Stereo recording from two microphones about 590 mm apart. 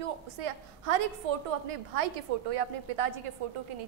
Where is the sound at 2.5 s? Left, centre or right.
Right.